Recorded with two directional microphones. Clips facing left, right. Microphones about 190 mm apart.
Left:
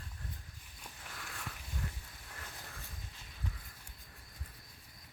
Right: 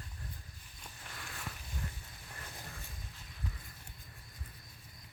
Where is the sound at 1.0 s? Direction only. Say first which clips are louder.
Even; centre (ahead or behind).